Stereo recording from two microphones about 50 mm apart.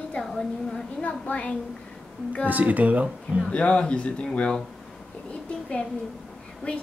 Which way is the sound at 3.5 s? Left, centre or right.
Left.